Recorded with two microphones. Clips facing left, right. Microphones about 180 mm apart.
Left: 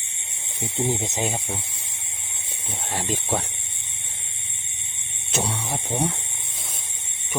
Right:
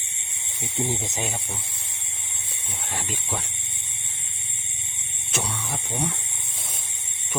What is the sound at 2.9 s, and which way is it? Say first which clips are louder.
Speech: left 6 dB; 40° left (ahead or behind).